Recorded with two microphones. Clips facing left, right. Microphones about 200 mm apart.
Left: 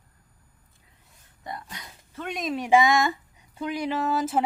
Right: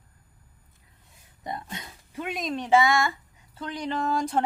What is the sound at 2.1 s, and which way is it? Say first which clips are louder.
Speech: left 1 dB; 5° right (ahead or behind).